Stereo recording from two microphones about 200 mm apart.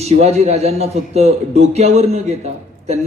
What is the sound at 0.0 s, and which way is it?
A man's voice, 30° right (ahead or behind).